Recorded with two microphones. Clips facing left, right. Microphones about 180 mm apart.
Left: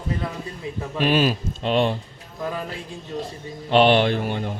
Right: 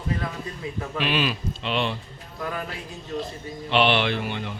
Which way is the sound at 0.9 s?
40° left (ahead or behind).